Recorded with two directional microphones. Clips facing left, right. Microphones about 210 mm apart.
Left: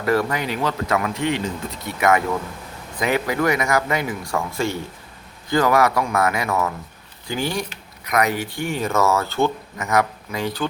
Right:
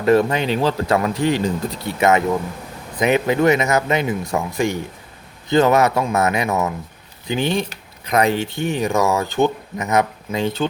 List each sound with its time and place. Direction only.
0.0 s speech: 25° right (ahead or behind)